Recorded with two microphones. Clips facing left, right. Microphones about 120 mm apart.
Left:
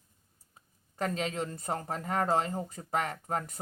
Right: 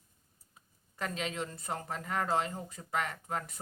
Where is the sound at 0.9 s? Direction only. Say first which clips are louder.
Left 4 dB; 40° left (ahead or behind).